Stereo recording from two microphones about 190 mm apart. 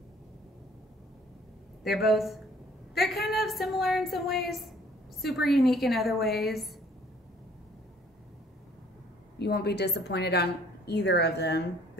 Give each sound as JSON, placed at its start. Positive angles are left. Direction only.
{"t": 1.8, "sound": "a woman's voice", "side_deg": 0}
{"t": 9.4, "sound": "a woman's voice", "side_deg": 60}